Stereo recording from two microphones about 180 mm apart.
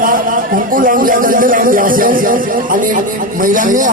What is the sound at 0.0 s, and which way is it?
Speech, 50° right (ahead or behind).